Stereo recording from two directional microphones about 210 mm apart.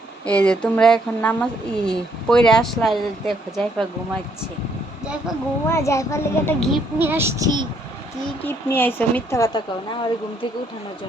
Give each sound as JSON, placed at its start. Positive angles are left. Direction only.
{"t": 0.3, "sound": "speech", "side_deg": 5}
{"t": 5.6, "sound": "speech", "side_deg": 15}
{"t": 6.7, "sound": "child singing", "side_deg": -10}
{"t": 8.4, "sound": "speech", "side_deg": 10}